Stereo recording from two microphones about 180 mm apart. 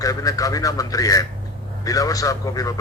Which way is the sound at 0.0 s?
20° left (ahead or behind).